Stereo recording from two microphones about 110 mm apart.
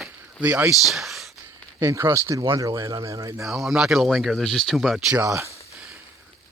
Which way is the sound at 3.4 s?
Centre (ahead or behind).